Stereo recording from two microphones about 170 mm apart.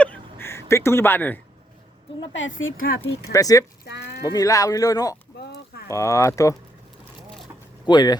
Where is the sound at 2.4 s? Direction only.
90° left.